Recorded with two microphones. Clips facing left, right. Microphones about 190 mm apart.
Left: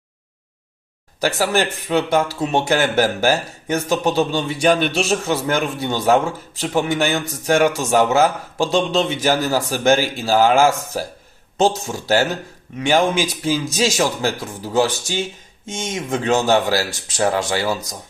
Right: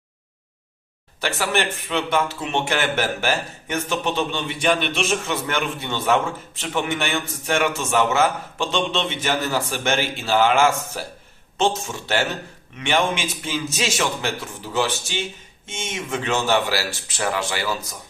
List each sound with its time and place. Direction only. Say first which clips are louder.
1.2 s speech: left 4 dB; 40° left (ahead or behind)